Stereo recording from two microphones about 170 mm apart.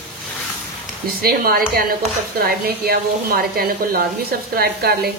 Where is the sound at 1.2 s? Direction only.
60° right (ahead or behind).